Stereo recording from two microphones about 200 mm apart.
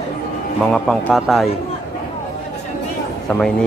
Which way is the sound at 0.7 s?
Centre (ahead or behind).